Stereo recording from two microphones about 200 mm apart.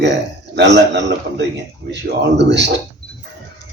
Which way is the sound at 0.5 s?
60° right (ahead or behind).